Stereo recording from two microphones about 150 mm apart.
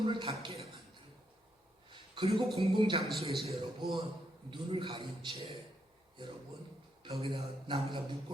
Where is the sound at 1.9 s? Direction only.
35° right (ahead or behind).